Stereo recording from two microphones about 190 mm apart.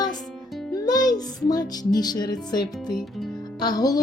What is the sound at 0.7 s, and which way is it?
Speech, 20° left (ahead or behind).